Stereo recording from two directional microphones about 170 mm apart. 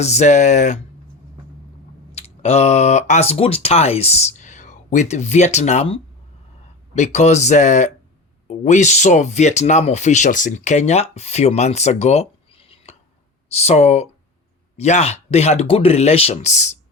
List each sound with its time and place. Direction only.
0.0 s speech: 40° left (ahead or behind)
2.1 s speech: 40° left (ahead or behind)